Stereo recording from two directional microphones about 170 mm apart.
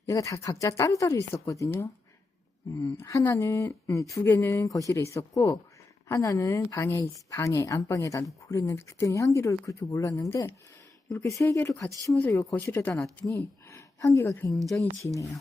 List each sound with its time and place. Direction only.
0.0 s speech: 20° left (ahead or behind)
3.0 s speech: 15° left (ahead or behind)
14.5 s speech: centre (ahead or behind)